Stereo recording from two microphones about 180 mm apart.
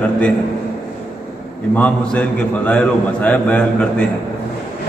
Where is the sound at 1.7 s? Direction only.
10° left (ahead or behind).